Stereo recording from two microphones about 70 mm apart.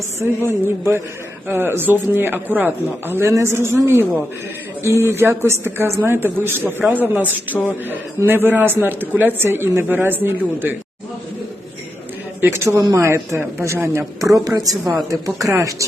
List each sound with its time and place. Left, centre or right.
0.2 s a man's voice: right
12.4 s a man's voice: right
12.6 s speech: right
15.4 s speech: right